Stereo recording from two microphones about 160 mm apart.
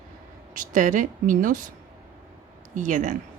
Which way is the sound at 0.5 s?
55° right (ahead or behind).